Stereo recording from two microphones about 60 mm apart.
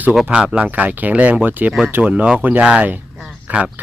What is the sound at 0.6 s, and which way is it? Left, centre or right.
Speech, right.